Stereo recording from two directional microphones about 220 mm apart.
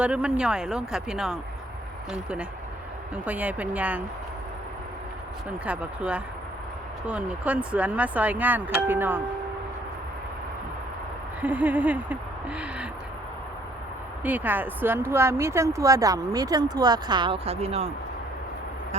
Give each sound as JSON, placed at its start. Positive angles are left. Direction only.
{"t": 0.0, "sound": "speech", "side_deg": -5}
{"t": 3.2, "sound": "a woman's voice", "side_deg": -5}
{"t": 5.6, "sound": "a woman's voice", "side_deg": -5}
{"t": 11.3, "sound": "a woman's voice", "side_deg": -5}
{"t": 14.3, "sound": "a woman's voice", "side_deg": -10}